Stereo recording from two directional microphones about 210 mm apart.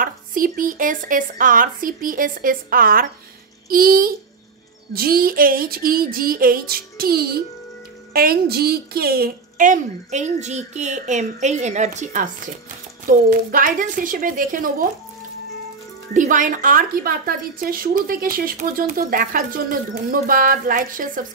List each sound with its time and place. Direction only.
0.0 s speech: 40° right (ahead or behind)
16.1 s speech: 40° right (ahead or behind)